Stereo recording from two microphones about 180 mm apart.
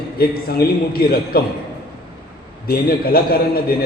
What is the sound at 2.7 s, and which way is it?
Speech, 55° left (ahead or behind).